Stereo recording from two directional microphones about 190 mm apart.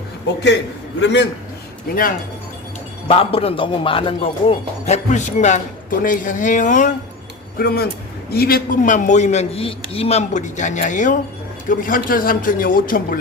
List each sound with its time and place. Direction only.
1.9 s a man's voice: 50° left (ahead or behind)
3.1 s speech: 30° left (ahead or behind)
7.6 s a man's voice: 55° left (ahead or behind)